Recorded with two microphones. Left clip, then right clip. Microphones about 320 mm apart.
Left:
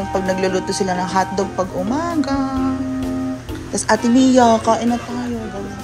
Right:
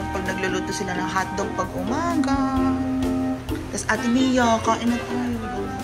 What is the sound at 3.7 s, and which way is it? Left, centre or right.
A child's voice, centre.